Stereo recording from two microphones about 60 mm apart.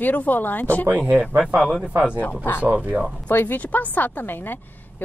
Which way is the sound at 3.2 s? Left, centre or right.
Left.